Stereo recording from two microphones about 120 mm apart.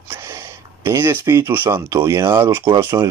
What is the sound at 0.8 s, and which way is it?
Speech, 20° right (ahead or behind).